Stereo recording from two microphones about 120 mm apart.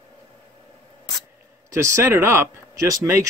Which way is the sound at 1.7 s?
25° right (ahead or behind).